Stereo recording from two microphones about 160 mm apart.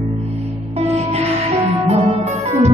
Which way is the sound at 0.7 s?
40° right (ahead or behind).